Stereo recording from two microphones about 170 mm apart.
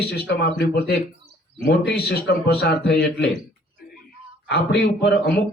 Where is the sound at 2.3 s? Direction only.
90° left.